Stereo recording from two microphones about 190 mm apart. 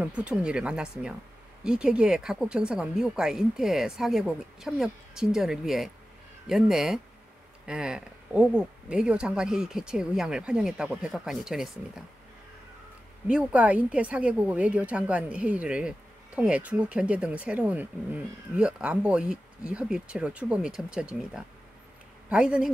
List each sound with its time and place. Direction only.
0.0 s speech: 5° right (ahead or behind)
13.3 s a woman's voice: 5° right (ahead or behind)